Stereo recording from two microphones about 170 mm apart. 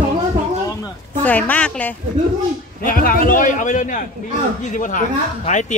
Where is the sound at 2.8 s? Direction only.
55° left (ahead or behind).